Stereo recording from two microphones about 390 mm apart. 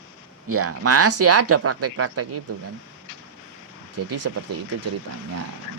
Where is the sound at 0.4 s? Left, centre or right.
Right.